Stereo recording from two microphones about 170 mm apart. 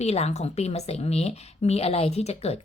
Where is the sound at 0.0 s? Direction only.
40° left (ahead or behind).